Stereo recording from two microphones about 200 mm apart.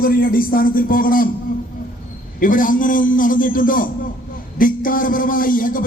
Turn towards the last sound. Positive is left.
turn(degrees=45)  # may be behind; listen again after turning